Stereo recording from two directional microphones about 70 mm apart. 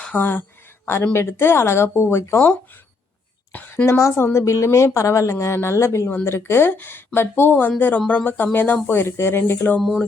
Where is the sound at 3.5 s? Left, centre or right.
Left.